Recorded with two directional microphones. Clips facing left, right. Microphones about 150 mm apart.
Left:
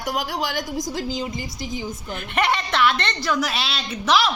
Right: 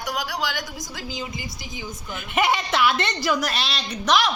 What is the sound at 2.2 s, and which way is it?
A woman's voice, 5° right (ahead or behind).